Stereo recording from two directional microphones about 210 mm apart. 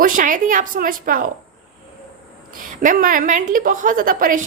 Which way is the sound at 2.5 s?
40° right (ahead or behind).